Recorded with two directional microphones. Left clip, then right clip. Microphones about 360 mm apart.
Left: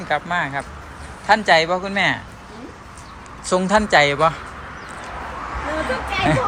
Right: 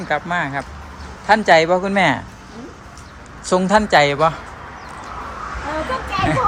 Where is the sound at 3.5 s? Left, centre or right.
Centre.